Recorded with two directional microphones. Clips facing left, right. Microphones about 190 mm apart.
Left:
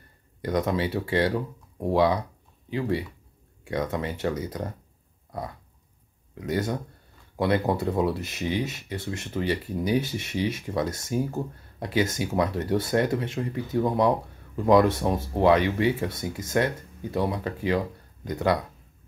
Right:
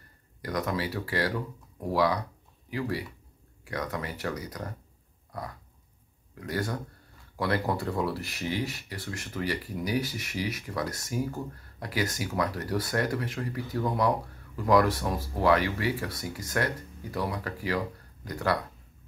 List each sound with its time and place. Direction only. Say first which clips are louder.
0.4 s speech: left 5 dB; 25° left (ahead or behind)
6.3 s speech: left 5 dB; 20° left (ahead or behind)